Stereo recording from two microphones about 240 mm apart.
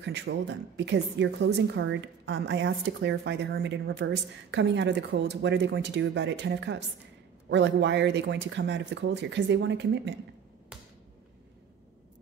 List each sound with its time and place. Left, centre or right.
0.0 s a woman's voice: right